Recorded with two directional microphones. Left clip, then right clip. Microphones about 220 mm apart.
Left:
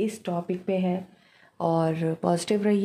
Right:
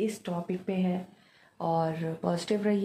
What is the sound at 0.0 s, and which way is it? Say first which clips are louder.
Speech: left 4 dB; 50° left (ahead or behind).